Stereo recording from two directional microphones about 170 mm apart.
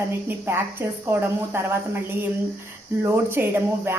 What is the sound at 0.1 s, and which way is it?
Speech, 15° right (ahead or behind).